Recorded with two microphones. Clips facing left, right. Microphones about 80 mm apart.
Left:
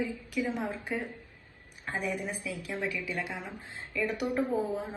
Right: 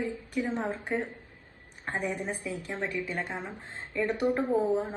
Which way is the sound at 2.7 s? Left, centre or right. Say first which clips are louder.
Even; right.